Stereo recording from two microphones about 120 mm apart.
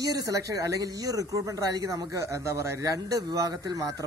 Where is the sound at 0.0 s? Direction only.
30° right (ahead or behind).